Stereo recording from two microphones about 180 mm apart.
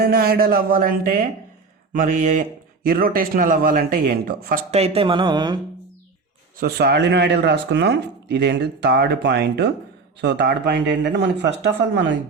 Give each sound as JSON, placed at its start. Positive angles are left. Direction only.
{"t": 0.0, "sound": "speech", "side_deg": -60}
{"t": 4.7, "sound": "speech", "side_deg": -35}
{"t": 6.6, "sound": "speech", "side_deg": -60}